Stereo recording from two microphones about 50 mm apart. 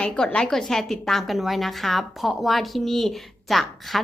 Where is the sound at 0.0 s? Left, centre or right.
Left.